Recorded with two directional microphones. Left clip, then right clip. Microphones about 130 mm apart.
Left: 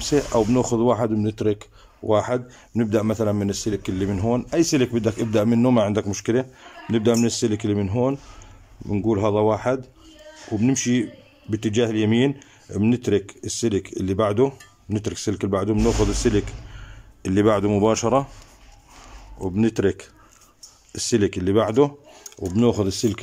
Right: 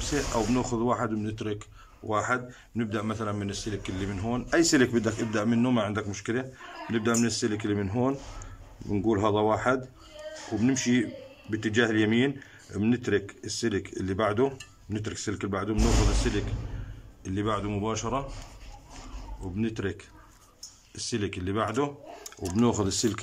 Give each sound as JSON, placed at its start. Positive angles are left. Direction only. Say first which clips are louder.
{"t": 0.0, "sound": "speech", "louder": "left 8 dB", "side_deg": 40}
{"t": 4.5, "sound": "a man's voice", "louder": "right 1 dB", "side_deg": 20}
{"t": 15.0, "sound": "a man's voice", "louder": "left 7 dB", "side_deg": 35}
{"t": 16.2, "sound": "speech", "louder": "left 9 dB", "side_deg": 50}
{"t": 17.2, "sound": "a man's voice", "louder": "left 11 dB", "side_deg": 80}
{"t": 19.4, "sound": "speech", "louder": "left 11 dB", "side_deg": 60}
{"t": 22.6, "sound": "speech", "louder": "left 6 dB", "side_deg": 15}